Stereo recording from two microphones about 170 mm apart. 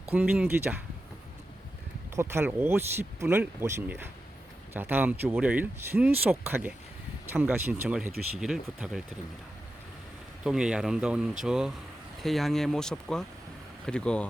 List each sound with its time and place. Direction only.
0.1 s speech: 10° right (ahead or behind)
2.1 s speech: 15° right (ahead or behind)
10.4 s speech: 5° right (ahead or behind)